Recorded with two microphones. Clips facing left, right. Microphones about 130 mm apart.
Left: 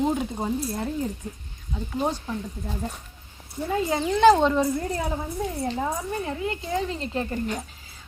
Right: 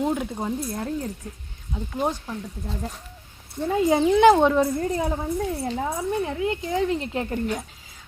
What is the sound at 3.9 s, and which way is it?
Speech, 15° right (ahead or behind).